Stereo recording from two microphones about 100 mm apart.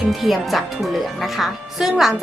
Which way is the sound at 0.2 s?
Centre (ahead or behind).